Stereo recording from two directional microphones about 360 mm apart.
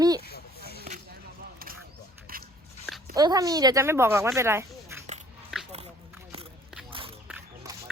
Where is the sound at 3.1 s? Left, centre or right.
Centre.